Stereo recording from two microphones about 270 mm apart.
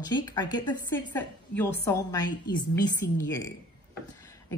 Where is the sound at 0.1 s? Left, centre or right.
Centre.